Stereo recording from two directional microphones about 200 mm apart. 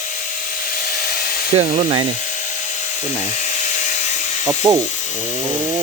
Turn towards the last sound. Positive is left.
turn(degrees=-15)  # may be behind; listen again after turning